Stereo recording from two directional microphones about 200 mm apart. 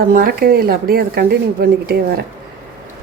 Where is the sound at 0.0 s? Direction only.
45° right (ahead or behind).